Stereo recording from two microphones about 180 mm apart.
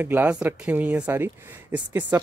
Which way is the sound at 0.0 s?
10° right (ahead or behind).